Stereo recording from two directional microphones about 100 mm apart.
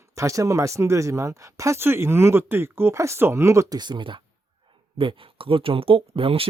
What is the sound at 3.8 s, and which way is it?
Speech, 50° right (ahead or behind).